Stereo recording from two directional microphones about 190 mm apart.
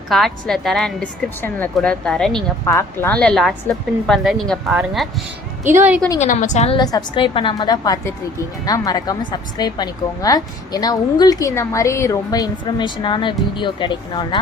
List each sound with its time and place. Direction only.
0.1 s speech: centre (ahead or behind)
2.6 s a woman's voice: 15° left (ahead or behind); by 6.0 s 10° right (ahead or behind)
6.1 s a woman's voice: 40° left (ahead or behind)
6.7 s a woman's voice: 20° left (ahead or behind)